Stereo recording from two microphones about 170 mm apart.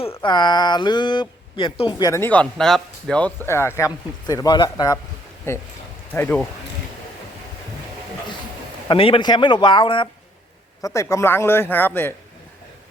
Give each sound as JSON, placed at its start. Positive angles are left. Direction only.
{"t": 0.2, "sound": "a man's voice", "side_deg": 25}
{"t": 8.9, "sound": "speech", "side_deg": 30}
{"t": 10.8, "sound": "a man's voice", "side_deg": 15}